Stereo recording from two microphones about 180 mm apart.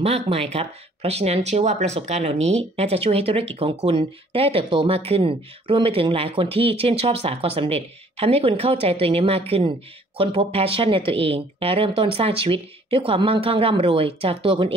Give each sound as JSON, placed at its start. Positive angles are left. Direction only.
{"t": 0.0, "sound": "speech", "side_deg": -35}